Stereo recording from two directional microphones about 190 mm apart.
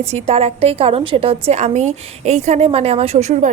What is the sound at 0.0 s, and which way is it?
A woman's voice, 35° right (ahead or behind).